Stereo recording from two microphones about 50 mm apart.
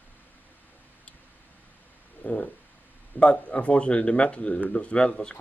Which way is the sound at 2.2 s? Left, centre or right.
Left.